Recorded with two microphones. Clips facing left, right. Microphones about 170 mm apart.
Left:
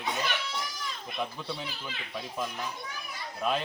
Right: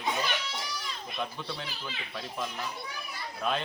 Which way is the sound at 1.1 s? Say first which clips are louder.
Left 1 dB; 10° left (ahead or behind).